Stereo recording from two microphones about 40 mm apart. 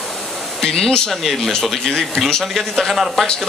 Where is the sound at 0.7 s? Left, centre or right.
Left.